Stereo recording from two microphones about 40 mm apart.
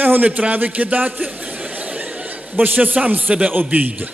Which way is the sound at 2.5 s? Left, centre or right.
Right.